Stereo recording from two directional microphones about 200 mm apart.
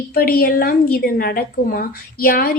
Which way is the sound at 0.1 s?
50° left (ahead or behind).